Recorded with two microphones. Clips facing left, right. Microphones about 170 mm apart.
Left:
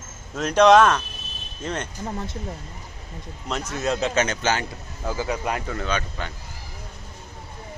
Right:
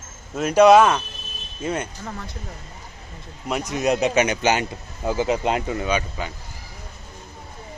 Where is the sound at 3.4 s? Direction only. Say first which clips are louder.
Right 4 dB; 15° right (ahead or behind).